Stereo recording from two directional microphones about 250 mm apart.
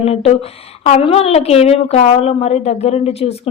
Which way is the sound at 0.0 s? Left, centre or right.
Left.